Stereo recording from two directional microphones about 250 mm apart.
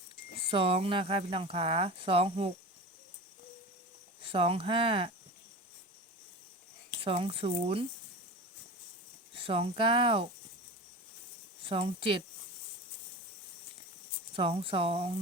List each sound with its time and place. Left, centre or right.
0.4 s speech: right
4.2 s speech: right
7.0 s speech: right
9.4 s speech: right
11.7 s speech: right
14.3 s speech: right